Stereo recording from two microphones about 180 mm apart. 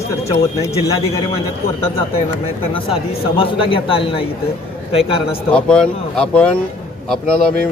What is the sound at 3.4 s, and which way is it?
A man's voice, 30° left (ahead or behind).